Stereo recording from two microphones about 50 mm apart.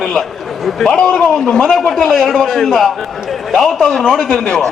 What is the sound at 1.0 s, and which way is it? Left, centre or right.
A man's voice, centre.